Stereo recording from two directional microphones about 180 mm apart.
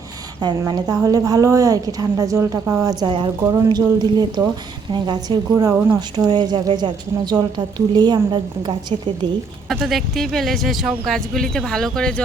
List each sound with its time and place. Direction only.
0.3 s speech: 25° right (ahead or behind)
9.6 s speech: centre (ahead or behind)